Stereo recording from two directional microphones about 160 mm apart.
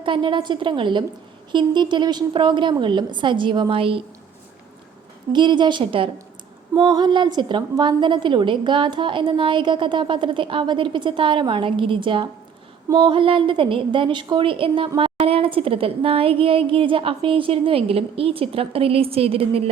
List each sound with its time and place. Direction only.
0.0 s a woman's voice: 30° right (ahead or behind)
5.3 s a woman's voice: 30° right (ahead or behind)